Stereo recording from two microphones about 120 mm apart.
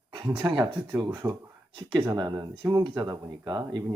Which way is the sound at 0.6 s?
40° right (ahead or behind).